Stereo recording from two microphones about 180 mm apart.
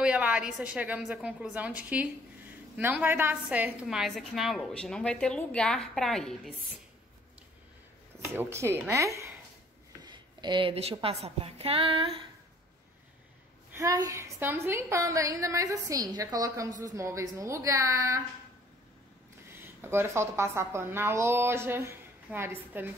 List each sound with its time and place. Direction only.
0.0 s a woman's voice: 5° right (ahead or behind)
8.4 s a woman's voice: 15° right (ahead or behind); by 12.3 s 30° right (ahead or behind)
13.7 s a woman's voice: 20° right (ahead or behind)
19.4 s a woman's voice: 10° right (ahead or behind)